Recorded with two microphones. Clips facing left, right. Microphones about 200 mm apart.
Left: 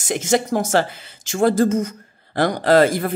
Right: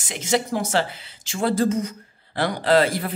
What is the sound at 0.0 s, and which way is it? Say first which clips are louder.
Speech: left 4 dB; 45° left (ahead or behind).